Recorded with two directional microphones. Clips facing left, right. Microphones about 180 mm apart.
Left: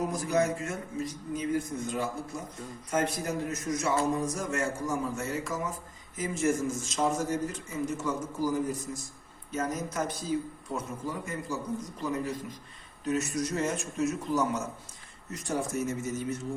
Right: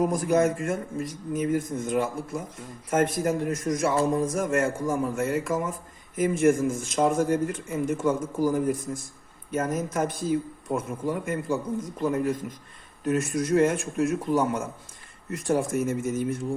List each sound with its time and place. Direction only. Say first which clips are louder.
0.0 s a man's voice: right 6 dB; 50° right (ahead or behind)